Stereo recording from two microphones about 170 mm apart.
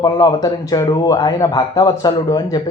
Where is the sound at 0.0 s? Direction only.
25° left (ahead or behind).